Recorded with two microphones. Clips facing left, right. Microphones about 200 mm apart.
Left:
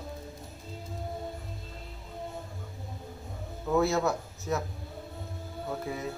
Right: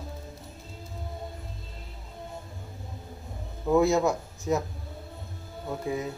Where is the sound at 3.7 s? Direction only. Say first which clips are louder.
Right 4 dB; 15° right (ahead or behind).